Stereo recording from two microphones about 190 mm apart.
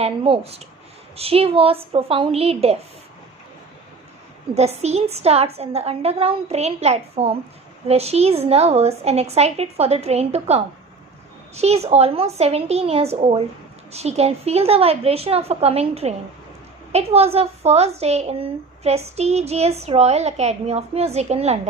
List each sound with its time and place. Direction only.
0.0 s a woman's voice: 30° right (ahead or behind)
4.5 s a woman's voice: 35° right (ahead or behind)